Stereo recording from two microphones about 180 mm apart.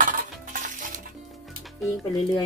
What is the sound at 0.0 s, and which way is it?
Stir, 45° right (ahead or behind).